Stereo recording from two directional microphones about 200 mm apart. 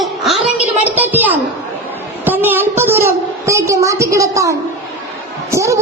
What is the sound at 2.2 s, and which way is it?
A woman's voice, 10° right (ahead or behind).